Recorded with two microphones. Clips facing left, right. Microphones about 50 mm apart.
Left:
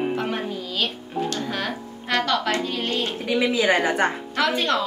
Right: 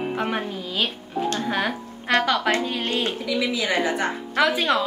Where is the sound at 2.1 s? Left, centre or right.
Centre.